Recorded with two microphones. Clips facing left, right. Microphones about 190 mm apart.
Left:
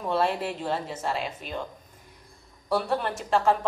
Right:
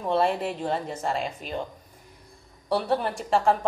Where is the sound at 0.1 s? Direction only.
5° left (ahead or behind).